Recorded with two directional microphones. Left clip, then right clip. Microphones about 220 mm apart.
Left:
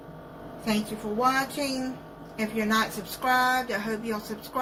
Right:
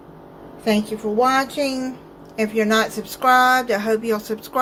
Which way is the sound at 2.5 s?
30° right (ahead or behind).